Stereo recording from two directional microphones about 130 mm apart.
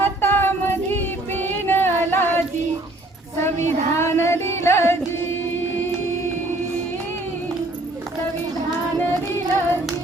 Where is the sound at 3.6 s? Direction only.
60° right (ahead or behind).